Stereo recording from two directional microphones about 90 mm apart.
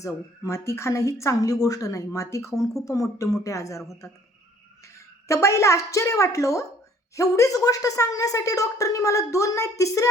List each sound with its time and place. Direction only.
0.0 s speech: 35° left (ahead or behind)
5.3 s speech: 35° left (ahead or behind)